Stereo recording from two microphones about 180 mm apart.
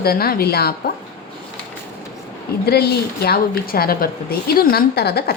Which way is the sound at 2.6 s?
60° left (ahead or behind).